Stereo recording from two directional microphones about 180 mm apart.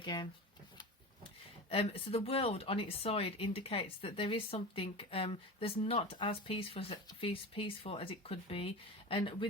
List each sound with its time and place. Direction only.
0.0 s speech: 25° left (ahead or behind)
1.7 s speech: 30° left (ahead or behind)